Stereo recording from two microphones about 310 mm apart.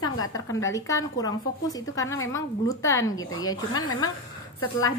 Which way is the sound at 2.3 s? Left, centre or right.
Centre.